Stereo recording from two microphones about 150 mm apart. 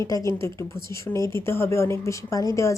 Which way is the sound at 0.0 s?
20° left (ahead or behind).